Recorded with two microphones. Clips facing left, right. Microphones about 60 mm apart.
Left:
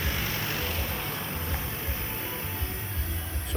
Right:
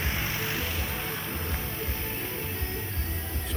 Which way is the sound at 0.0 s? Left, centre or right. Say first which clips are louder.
Even; right.